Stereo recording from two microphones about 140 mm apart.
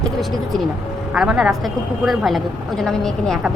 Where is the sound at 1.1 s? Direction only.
5° right (ahead or behind).